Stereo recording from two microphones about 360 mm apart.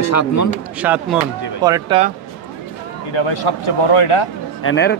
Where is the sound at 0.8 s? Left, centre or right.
Centre.